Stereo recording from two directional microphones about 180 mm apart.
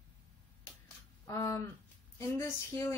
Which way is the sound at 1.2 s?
15° left (ahead or behind).